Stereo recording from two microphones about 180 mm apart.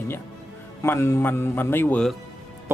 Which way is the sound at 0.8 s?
15° left (ahead or behind).